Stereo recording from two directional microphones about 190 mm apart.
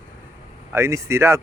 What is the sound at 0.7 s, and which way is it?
Speech, 15° right (ahead or behind).